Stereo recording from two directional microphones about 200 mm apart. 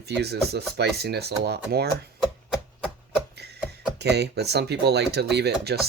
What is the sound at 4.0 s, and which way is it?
Speech, 55° right (ahead or behind).